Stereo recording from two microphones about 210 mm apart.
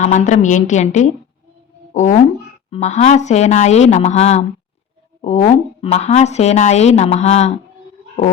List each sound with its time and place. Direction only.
0.0 s a woman's voice: 35° left (ahead or behind)